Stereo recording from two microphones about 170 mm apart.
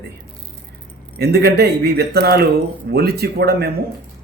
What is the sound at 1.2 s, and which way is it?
A man's voice, 70° right (ahead or behind).